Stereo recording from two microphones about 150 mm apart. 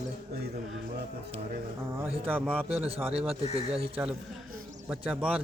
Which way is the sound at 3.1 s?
40° right (ahead or behind).